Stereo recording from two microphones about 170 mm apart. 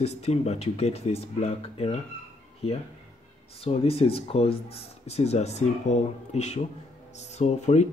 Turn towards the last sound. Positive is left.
turn(degrees=40)  # may be behind; listen again after turning